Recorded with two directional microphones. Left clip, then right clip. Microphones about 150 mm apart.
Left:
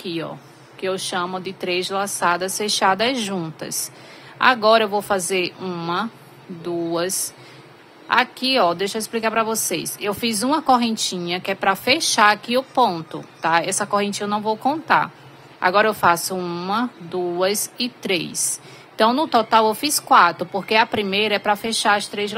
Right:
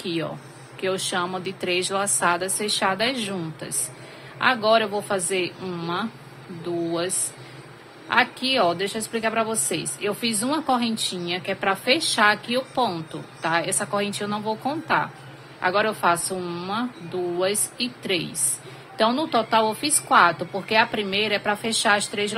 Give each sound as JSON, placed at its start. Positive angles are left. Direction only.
{"t": 0.0, "sound": "a woman's voice", "side_deg": 20}
{"t": 8.1, "sound": "a woman's voice", "side_deg": 30}